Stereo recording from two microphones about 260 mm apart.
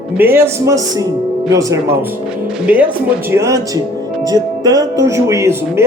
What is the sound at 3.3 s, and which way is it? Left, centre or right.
Speech, centre.